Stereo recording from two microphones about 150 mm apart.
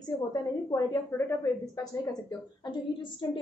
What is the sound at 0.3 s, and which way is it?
A woman's voice, 20° left (ahead or behind).